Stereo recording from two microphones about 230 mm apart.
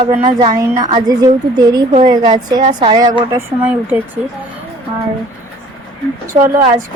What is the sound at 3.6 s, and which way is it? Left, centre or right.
Speech, centre.